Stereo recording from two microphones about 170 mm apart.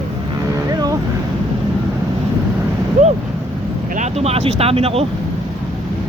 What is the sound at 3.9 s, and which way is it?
Speech, 40° right (ahead or behind).